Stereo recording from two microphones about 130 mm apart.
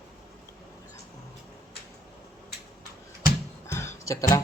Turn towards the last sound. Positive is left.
turn(degrees=25)  # may be behind; listen again after turning